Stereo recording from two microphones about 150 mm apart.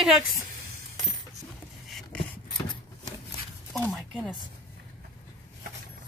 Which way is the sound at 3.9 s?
Centre (ahead or behind).